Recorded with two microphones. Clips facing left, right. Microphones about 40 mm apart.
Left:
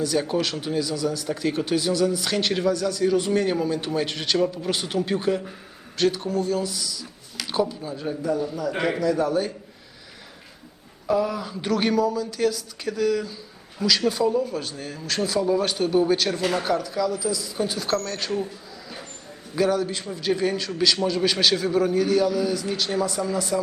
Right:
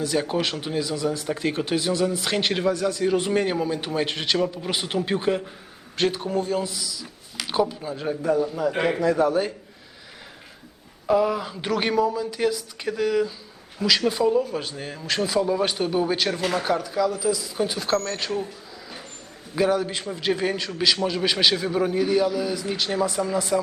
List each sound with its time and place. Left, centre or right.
0.0 s a man's voice: centre
7.3 s speech: centre
8.2 s speech: right
8.8 s a man's voice: centre
9.0 s a man's voice: right
11.1 s speech: right
13.8 s a man's voice: centre
19.5 s speech: right
20.7 s a man's voice: centre
23.3 s a man's voice: right